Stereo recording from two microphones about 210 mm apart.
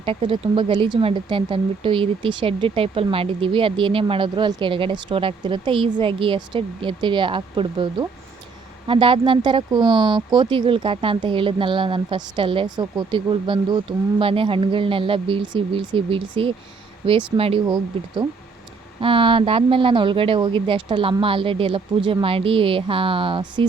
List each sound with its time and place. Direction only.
0.0 s speech: 25° right (ahead or behind)
18.9 s speech: 25° right (ahead or behind)